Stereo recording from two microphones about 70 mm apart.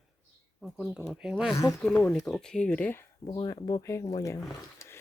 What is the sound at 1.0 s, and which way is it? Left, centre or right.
Speech, centre.